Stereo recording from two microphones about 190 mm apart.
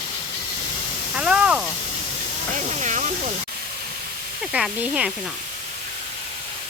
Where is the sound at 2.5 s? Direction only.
40° right (ahead or behind).